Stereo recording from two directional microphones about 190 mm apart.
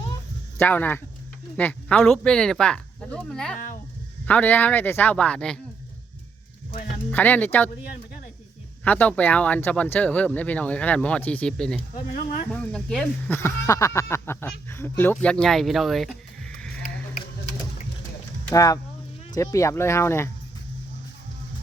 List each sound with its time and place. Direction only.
0.6 s speech: 10° left (ahead or behind)
7.1 s speech: 10° left (ahead or behind)
8.8 s speech: 10° left (ahead or behind)
11.9 s speech: 50° left (ahead or behind)
12.5 s speech: 5° left (ahead or behind)
18.4 s speech: 15° left (ahead or behind)